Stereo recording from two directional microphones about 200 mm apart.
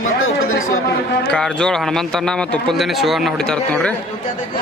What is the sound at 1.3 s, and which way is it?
A man's voice, 5° left (ahead or behind).